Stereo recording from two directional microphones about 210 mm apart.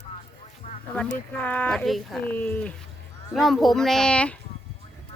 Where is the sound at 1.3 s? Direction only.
5° left (ahead or behind).